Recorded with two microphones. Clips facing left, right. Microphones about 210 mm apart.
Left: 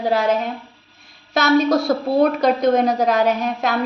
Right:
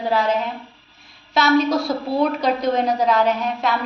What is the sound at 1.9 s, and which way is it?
A woman's voice, 50° left (ahead or behind).